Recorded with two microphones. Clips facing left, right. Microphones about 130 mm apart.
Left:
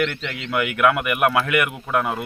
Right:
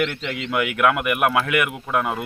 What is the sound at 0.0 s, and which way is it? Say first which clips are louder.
A man's voice: even; 5° right (ahead or behind).